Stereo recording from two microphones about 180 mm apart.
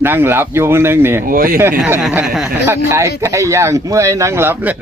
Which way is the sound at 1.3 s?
50° right (ahead or behind).